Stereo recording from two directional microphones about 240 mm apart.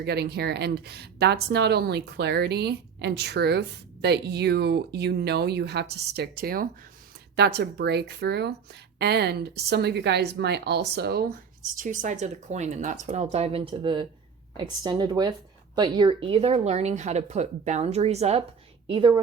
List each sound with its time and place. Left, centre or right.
0.0 s speech: right
11.8 s speech: right